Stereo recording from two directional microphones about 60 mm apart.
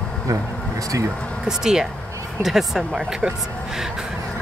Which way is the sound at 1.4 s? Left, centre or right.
Centre.